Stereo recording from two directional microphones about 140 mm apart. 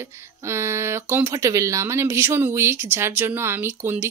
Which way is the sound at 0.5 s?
20° right (ahead or behind).